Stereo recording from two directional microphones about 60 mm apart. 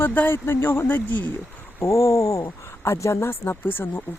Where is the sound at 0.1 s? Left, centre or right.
Left.